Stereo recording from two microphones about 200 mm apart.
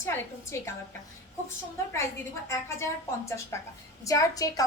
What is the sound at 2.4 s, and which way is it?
A woman's voice, 15° left (ahead or behind).